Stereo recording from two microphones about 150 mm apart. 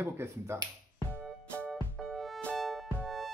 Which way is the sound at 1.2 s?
5° left (ahead or behind).